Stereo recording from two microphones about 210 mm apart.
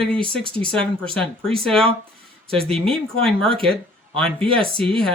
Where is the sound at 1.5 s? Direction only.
Centre (ahead or behind).